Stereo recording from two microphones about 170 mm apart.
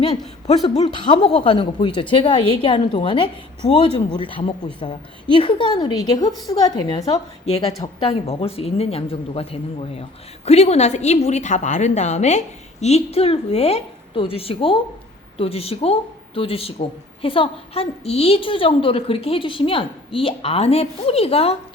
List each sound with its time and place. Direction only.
0.7 s a woman's voice: 35° left (ahead or behind)